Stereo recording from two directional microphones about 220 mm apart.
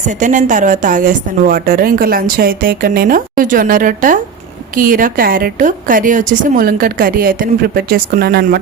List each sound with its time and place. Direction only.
0.2 s a woman's voice: 35° right (ahead or behind)